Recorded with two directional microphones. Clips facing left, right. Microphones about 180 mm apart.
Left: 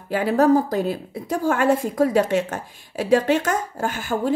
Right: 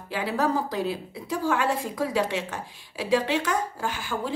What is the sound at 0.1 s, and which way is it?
A woman's voice, 45° left (ahead or behind).